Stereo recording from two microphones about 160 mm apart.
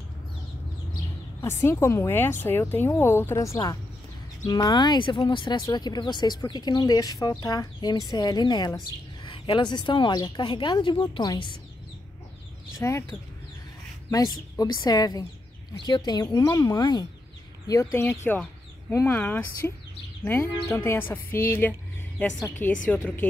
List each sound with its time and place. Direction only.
1.4 s a woman's voice: 15° left (ahead or behind)
12.7 s speech: 15° left (ahead or behind)
14.1 s a woman's voice: 20° left (ahead or behind)
20.7 s a woman's voice: 15° left (ahead or behind)
22.8 s a woman's voice: 10° left (ahead or behind)